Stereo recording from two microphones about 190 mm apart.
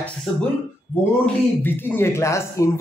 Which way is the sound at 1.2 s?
10° left (ahead or behind).